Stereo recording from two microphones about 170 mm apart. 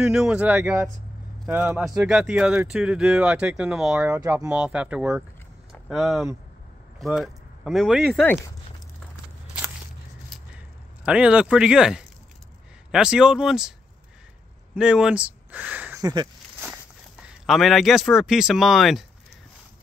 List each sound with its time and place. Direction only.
0.0 s speech: 5° right (ahead or behind)
11.1 s speech: 5° right (ahead or behind)
14.8 s speech: 5° right (ahead or behind)
16.0 s speech: 25° right (ahead or behind)
17.5 s speech: centre (ahead or behind)